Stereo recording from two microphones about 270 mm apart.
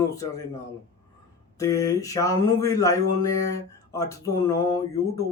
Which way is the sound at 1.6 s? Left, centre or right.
Centre.